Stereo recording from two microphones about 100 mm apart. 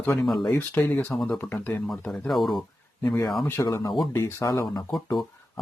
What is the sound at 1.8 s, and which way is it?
Speech, 5° left (ahead or behind).